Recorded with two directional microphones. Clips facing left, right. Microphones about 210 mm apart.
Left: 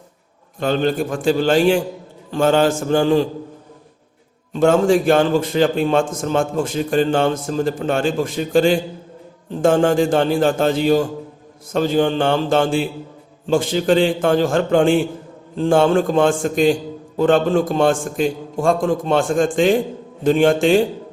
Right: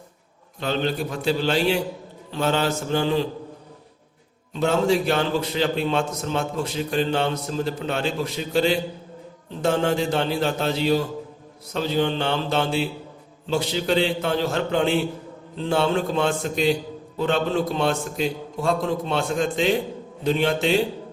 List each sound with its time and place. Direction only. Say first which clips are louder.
0.6 s a man's voice: left 6 dB; 50° left (ahead or behind)
4.5 s a man's voice: left 6 dB; 50° left (ahead or behind)